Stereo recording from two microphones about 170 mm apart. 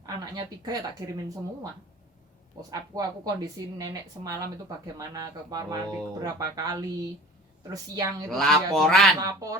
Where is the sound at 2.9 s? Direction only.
20° right (ahead or behind).